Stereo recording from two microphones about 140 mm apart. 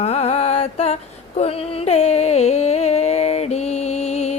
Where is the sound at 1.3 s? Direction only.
45° left (ahead or behind).